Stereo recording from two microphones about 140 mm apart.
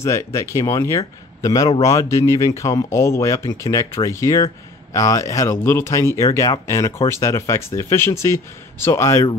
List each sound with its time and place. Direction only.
0.0 s speech: 20° left (ahead or behind)